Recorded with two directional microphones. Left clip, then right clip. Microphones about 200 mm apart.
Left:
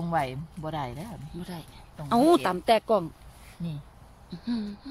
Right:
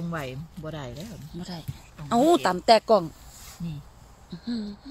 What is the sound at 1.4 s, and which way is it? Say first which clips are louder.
A woman's voice: right 2 dB; 5° right (ahead or behind).